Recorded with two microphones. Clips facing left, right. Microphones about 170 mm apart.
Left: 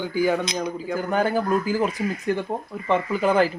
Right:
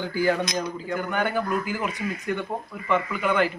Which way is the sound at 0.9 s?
35° left (ahead or behind).